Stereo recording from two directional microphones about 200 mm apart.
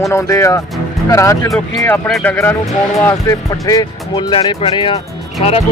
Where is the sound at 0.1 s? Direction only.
15° left (ahead or behind).